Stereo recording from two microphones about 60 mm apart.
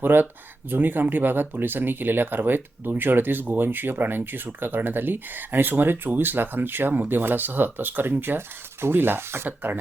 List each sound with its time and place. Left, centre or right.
0.0 s speech: right